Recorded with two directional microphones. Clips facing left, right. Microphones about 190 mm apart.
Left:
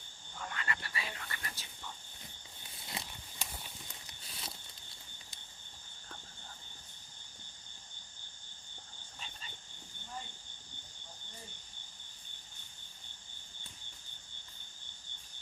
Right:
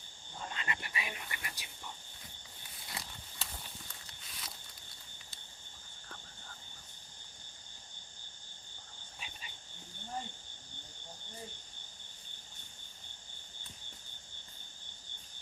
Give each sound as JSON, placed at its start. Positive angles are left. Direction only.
{"t": 0.3, "sound": "a sound", "side_deg": -20}
{"t": 2.8, "sound": "walk", "side_deg": 25}
{"t": 4.2, "sound": "walk", "side_deg": 30}